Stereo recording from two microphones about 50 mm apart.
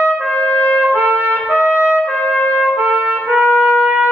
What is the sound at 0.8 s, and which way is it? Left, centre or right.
Trumpet, right.